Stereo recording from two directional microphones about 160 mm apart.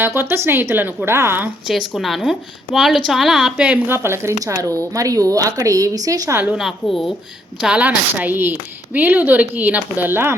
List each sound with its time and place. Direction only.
0.0 s a woman's voice: 15° right (ahead or behind)
1.9 s a woman's voice: centre (ahead or behind); by 6.4 s 20° right (ahead or behind)
6.4 s a woman's voice: 5° right (ahead or behind)